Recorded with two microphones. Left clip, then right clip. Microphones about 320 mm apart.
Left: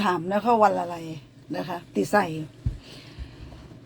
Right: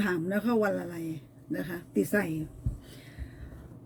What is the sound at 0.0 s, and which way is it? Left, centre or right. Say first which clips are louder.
Speech: left 7 dB; left.